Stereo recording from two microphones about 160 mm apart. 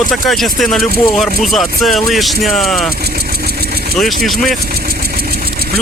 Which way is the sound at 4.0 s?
Centre (ahead or behind).